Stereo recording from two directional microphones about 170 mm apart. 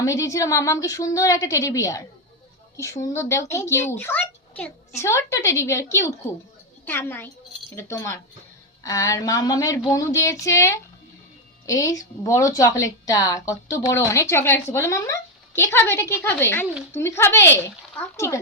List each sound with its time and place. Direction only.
0.0 s a woman's voice: 20° left (ahead or behind)